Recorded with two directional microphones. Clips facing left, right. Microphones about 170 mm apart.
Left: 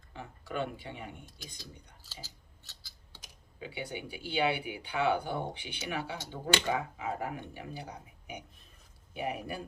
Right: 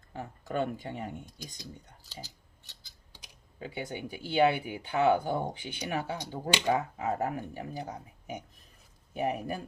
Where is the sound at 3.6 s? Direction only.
45° right (ahead or behind).